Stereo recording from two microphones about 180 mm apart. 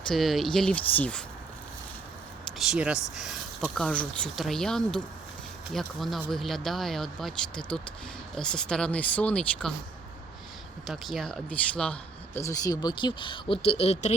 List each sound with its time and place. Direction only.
0.1 s speech: centre (ahead or behind)
2.6 s speech: 5° right (ahead or behind)
10.8 s speech: centre (ahead or behind)
12.4 s speech: 20° left (ahead or behind); by 14.2 s 35° left (ahead or behind)